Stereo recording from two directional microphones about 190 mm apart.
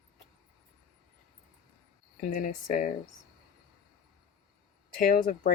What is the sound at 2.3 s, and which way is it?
Speech, 45° left (ahead or behind).